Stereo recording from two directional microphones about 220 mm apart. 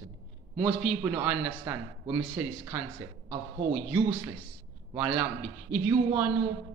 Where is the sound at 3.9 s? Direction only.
10° right (ahead or behind).